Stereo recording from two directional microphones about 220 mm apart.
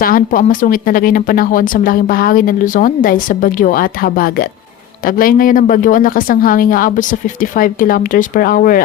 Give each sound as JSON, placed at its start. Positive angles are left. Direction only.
{"t": 0.0, "sound": "speech", "side_deg": 40}